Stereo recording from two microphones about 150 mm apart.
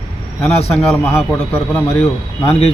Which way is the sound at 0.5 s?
45° left (ahead or behind).